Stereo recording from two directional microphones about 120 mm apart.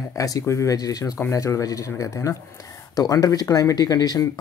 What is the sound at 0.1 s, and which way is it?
Speech, 25° left (ahead or behind).